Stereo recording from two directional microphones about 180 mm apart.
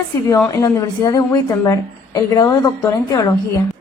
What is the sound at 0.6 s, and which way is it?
A woman's voice, 20° left (ahead or behind).